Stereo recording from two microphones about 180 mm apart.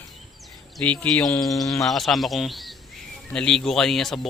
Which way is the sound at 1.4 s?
20° left (ahead or behind).